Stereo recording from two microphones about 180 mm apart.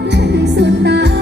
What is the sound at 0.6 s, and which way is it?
Music, 70° right (ahead or behind).